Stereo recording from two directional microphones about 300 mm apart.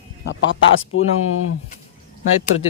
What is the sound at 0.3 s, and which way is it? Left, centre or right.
Speech, left.